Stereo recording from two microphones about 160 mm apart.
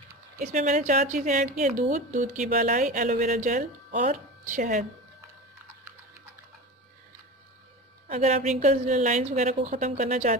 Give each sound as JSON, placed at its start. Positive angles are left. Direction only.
{"t": 0.4, "sound": "a woman's voice", "side_deg": -50}
{"t": 8.1, "sound": "a woman's voice", "side_deg": -50}